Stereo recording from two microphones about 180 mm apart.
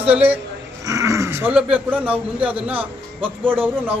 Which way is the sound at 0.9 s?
15° right (ahead or behind).